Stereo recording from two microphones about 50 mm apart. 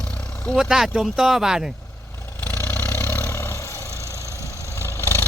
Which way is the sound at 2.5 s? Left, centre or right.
Left.